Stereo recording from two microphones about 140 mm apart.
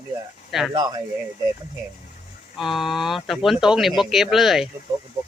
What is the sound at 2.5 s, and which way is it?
Speech, centre (ahead or behind).